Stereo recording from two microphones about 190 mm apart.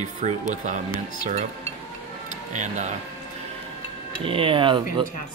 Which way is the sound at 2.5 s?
40° right (ahead or behind).